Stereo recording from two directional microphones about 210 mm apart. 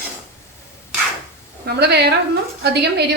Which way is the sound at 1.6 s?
50° right (ahead or behind).